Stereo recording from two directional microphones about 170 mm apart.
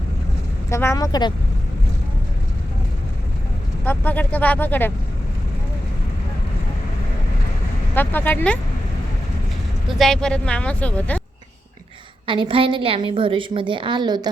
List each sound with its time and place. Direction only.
0.7 s speech: 15° left (ahead or behind)
3.8 s speech: 10° left (ahead or behind)
7.9 s speech: 10° left (ahead or behind)
10.0 s speech: 5° left (ahead or behind)
12.2 s a woman's voice: 30° right (ahead or behind)